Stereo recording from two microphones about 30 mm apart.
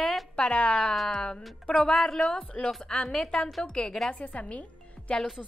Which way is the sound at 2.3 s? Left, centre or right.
Left.